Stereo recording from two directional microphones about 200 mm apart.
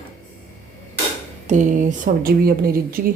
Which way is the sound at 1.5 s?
40° right (ahead or behind).